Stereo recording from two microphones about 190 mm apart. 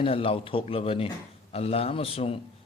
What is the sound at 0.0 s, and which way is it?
A man's voice, 30° left (ahead or behind).